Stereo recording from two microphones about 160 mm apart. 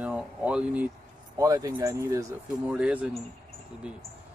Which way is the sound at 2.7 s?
5° right (ahead or behind).